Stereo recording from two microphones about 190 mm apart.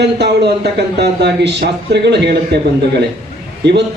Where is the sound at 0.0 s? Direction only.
60° right (ahead or behind).